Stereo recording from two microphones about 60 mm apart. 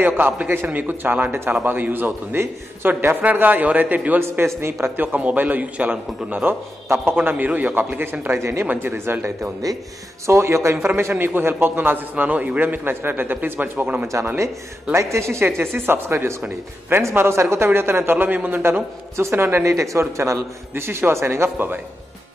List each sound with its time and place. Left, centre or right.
0.0 s a man's voice: right
4.6 s a man's voice: right
4.9 s a man's voice: right
9.6 s speech: right
10.2 s a man's voice: right
14.0 s a man's voice: right
15.0 s a man's voice: right
19.1 s a man's voice: right
19.7 s a man's voice: right
21.5 s a man's voice: right